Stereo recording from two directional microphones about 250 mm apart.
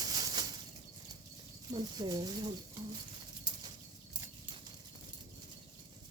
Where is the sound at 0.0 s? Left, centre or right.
Centre.